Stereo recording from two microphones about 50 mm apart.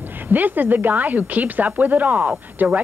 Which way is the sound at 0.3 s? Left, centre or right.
Right.